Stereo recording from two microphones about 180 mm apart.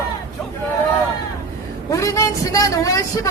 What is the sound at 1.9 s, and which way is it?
A man's voice, 15° left (ahead or behind).